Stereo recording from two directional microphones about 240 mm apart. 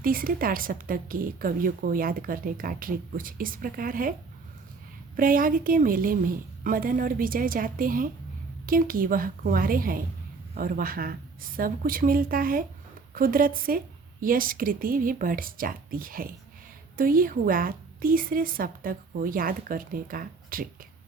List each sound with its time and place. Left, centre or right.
0.0 s a woman's voice: right
5.1 s a woman's voice: right